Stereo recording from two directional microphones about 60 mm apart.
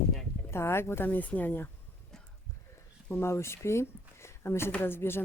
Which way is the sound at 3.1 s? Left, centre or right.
Left.